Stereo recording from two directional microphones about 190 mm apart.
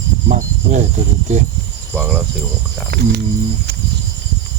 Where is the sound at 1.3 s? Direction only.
40° right (ahead or behind).